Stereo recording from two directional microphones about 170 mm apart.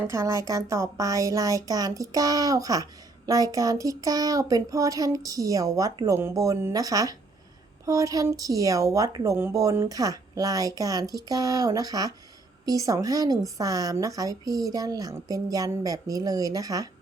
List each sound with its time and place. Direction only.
0.1 s a woman's voice: 15° right (ahead or behind)